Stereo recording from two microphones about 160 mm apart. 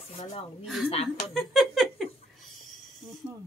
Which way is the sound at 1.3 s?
Centre (ahead or behind).